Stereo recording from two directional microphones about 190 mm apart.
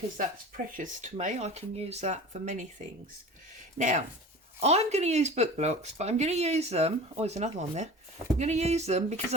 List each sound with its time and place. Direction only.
0.2 s speech: 45° right (ahead or behind)
3.8 s speech: 40° right (ahead or behind)